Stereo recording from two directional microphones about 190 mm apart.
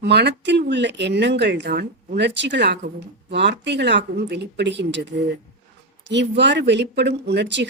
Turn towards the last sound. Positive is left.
turn(degrees=-65)  # may be behind; listen again after turning